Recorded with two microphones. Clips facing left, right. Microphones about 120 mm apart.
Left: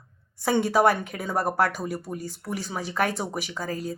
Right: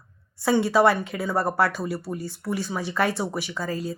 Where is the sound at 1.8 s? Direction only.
45° left (ahead or behind).